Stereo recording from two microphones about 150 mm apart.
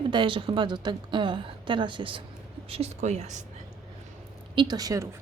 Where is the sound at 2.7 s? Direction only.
45° right (ahead or behind).